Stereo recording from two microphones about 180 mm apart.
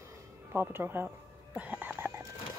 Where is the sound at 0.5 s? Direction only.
10° right (ahead or behind).